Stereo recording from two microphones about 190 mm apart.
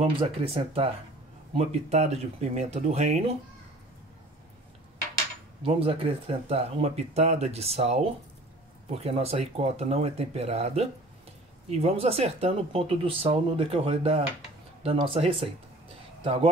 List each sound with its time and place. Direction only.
0.0 s speech: 30° right (ahead or behind)
5.6 s speech: 30° right (ahead or behind)